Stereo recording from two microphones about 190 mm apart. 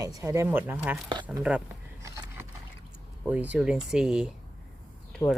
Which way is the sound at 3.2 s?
10° right (ahead or behind).